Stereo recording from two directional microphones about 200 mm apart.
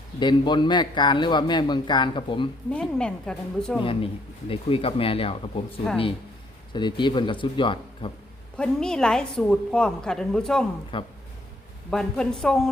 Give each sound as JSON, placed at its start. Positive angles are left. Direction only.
{"t": 0.2, "sound": "a man's voice", "side_deg": 20}
{"t": 2.6, "sound": "a woman's voice", "side_deg": 5}
{"t": 3.8, "sound": "a man's voice", "side_deg": 25}
{"t": 8.5, "sound": "a woman's voice", "side_deg": 5}
{"t": 10.9, "sound": "a man's voice", "side_deg": 25}
{"t": 11.9, "sound": "a woman's voice", "side_deg": 5}